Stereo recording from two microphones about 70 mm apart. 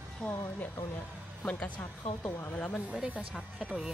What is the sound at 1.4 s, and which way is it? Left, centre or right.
Speech, centre.